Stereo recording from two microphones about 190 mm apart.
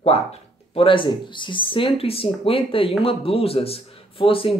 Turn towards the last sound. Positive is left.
turn(degrees=30)  # may be behind; listen again after turning